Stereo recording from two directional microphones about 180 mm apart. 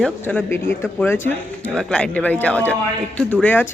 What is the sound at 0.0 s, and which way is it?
Speech, 10° left (ahead or behind).